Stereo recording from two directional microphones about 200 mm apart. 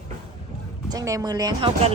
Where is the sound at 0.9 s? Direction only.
15° right (ahead or behind).